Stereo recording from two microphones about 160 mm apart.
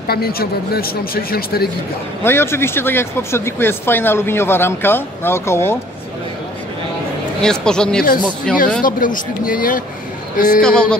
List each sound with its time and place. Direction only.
0.1 s speech: 75° left (ahead or behind)
2.2 s speech: 15° left (ahead or behind)
7.4 s speech: 5° left (ahead or behind)
8.8 s a man's voice: 60° left (ahead or behind)
10.6 s speech: 5° left (ahead or behind)